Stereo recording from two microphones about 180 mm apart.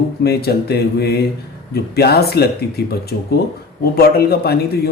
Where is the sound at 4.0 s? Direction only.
60° left (ahead or behind).